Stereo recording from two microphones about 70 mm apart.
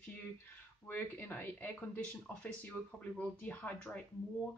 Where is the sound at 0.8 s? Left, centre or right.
Left.